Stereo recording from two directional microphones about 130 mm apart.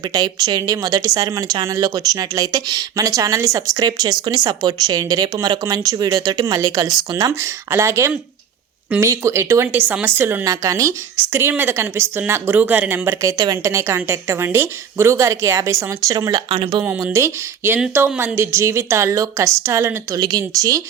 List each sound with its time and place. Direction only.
0.0 s speech: 30° right (ahead or behind)
20.1 s speech: 30° right (ahead or behind)